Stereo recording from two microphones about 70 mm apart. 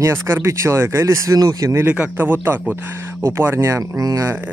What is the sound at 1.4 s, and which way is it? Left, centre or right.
Speech, right.